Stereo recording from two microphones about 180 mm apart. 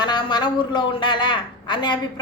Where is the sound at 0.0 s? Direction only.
25° left (ahead or behind).